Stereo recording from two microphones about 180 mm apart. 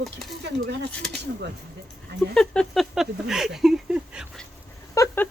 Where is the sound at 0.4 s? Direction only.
65° right (ahead or behind).